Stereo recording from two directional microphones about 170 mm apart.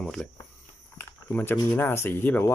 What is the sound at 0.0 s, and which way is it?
Speech, centre (ahead or behind).